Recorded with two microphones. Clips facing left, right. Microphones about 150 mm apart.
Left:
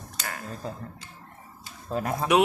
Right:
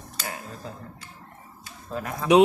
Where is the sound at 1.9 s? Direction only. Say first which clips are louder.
Left 3 dB; 35° left (ahead or behind).